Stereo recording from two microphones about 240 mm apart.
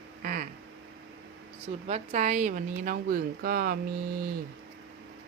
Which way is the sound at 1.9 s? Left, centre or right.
Right.